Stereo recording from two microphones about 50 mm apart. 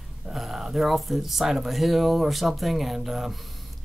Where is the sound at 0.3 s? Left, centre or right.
Centre.